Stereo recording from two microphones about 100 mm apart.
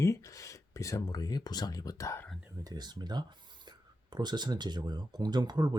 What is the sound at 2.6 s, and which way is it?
Speech, 45° right (ahead or behind).